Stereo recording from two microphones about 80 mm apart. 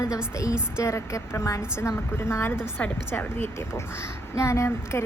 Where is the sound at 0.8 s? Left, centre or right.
Left.